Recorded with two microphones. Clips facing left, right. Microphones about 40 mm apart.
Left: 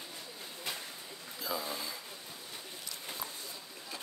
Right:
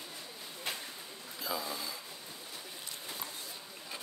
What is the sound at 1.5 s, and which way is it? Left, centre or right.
Speech, centre.